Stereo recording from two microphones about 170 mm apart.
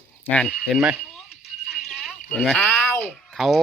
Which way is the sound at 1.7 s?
Centre (ahead or behind).